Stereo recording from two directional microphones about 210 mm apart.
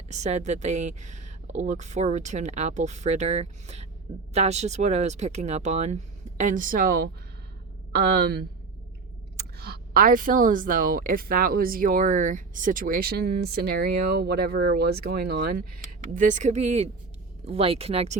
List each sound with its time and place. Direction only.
0.1 s a woman's voice: 35° right (ahead or behind)